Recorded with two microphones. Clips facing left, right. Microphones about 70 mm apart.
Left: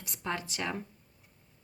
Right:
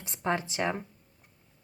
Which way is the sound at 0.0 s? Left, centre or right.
Right.